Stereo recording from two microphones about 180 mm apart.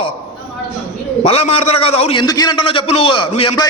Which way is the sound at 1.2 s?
35° left (ahead or behind).